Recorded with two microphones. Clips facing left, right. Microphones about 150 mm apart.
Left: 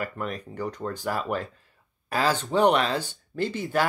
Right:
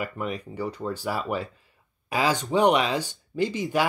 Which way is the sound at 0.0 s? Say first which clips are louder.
Right 1 dB; 10° right (ahead or behind).